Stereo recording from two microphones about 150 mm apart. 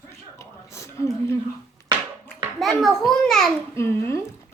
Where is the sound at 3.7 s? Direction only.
15° left (ahead or behind).